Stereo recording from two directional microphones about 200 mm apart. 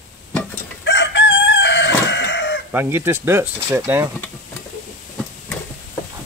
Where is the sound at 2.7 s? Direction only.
10° right (ahead or behind).